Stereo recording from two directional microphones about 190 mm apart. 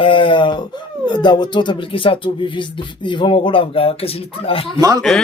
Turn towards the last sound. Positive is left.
turn(degrees=-20)  # may be behind; listen again after turning